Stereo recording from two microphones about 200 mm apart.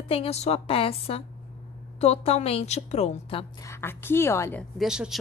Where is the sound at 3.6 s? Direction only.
10° left (ahead or behind).